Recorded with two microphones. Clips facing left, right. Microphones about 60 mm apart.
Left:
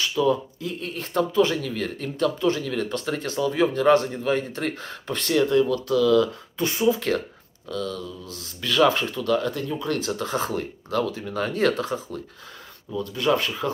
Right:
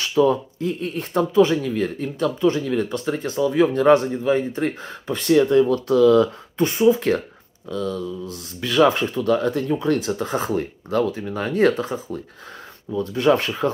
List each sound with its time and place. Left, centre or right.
0.1 s speech: right
13.1 s speech: right